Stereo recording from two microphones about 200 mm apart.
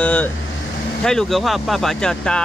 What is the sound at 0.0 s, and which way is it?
Speech, 10° left (ahead or behind).